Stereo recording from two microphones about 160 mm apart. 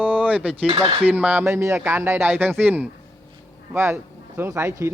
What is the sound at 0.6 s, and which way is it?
Speech, 30° right (ahead or behind).